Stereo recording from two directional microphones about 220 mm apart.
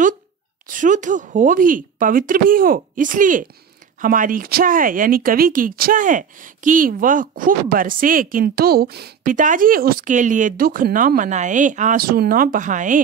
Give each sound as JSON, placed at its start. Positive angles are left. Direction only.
{"t": 0.7, "sound": "speech", "side_deg": -35}